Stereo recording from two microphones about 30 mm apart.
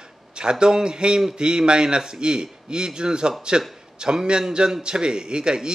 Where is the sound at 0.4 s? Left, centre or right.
Right.